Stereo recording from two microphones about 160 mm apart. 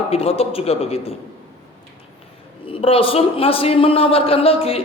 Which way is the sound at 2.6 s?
35° left (ahead or behind).